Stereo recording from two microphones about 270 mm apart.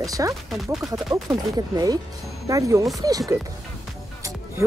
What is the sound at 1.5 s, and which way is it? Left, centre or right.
Speech, centre.